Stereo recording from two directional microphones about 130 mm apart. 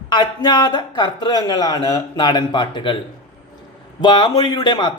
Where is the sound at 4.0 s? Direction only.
35° left (ahead or behind).